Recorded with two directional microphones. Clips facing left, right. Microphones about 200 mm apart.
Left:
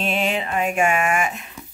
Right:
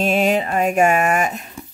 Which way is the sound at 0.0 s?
40° right (ahead or behind).